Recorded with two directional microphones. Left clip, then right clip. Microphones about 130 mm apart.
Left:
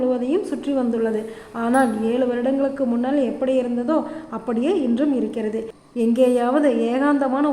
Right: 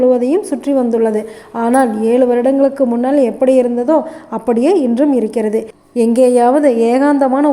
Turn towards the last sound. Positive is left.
turn(degrees=-40)  # may be behind; listen again after turning